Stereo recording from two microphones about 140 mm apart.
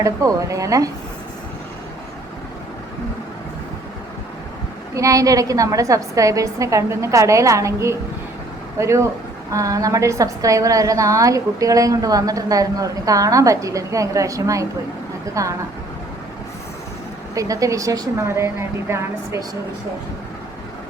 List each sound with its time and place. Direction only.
0.0 s a woman's voice: 25° right (ahead or behind)
4.9 s a woman's voice: 25° right (ahead or behind)
17.3 s a woman's voice: 25° right (ahead or behind)